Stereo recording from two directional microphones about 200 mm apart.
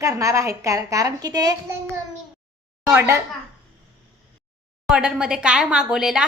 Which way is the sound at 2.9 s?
15° right (ahead or behind).